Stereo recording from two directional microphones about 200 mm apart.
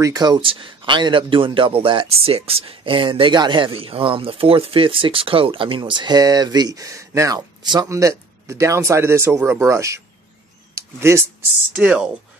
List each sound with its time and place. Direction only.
0.0 s speech: 20° right (ahead or behind)
10.7 s camera: 15° right (ahead or behind)
11.7 s speech: 5° right (ahead or behind)